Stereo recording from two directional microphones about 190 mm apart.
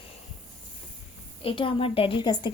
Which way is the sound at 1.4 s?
30° left (ahead or behind).